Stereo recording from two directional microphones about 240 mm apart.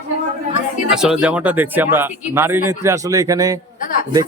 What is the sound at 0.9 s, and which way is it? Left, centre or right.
Speech, centre.